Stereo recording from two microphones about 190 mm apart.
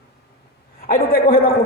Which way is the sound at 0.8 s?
50° left (ahead or behind).